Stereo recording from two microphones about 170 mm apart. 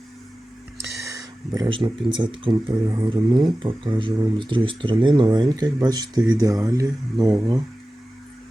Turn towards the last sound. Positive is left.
turn(degrees=-20)  # may be behind; listen again after turning